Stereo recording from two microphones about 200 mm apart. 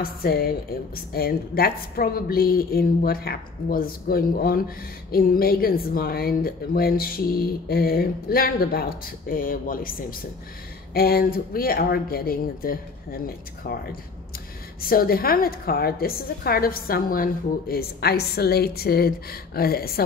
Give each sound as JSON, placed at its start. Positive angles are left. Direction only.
{"t": 0.0, "sound": "a woman's voice", "side_deg": 50}